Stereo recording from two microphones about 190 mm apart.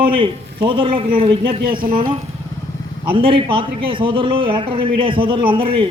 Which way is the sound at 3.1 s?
25° right (ahead or behind).